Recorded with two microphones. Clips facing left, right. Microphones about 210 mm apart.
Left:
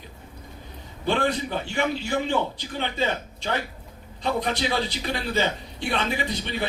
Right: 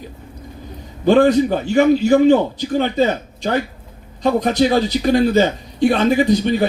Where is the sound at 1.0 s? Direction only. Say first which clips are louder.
Right 12 dB; 45° right (ahead or behind).